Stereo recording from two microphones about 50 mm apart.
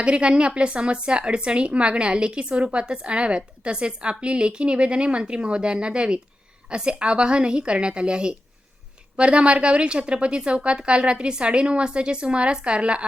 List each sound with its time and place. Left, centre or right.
0.0 s a woman's voice: right